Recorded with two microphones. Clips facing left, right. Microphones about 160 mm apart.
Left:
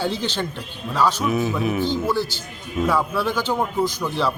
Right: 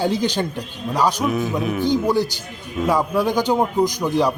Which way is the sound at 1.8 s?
15° right (ahead or behind).